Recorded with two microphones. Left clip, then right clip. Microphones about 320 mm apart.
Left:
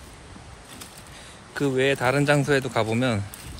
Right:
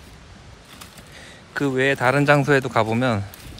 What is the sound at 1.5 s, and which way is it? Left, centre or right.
Speech, right.